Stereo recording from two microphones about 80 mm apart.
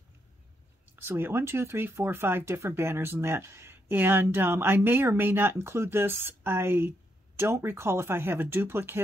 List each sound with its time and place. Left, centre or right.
0.9 s speech: right